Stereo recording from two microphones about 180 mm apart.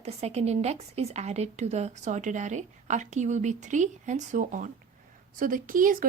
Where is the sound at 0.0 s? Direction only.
35° right (ahead or behind).